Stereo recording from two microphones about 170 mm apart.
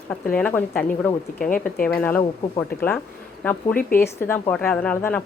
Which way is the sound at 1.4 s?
55° left (ahead or behind).